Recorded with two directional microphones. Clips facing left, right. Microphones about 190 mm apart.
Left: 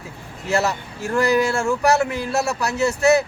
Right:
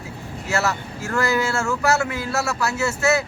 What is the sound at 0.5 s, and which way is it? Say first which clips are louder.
Speech: left 2 dB; 15° left (ahead or behind).